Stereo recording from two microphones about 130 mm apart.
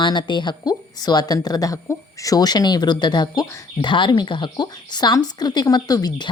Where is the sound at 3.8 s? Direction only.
40° left (ahead or behind).